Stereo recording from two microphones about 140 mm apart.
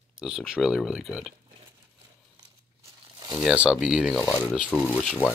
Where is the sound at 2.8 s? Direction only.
30° right (ahead or behind).